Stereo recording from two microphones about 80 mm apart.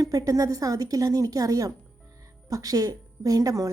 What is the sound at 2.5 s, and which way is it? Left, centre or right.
Speech, right.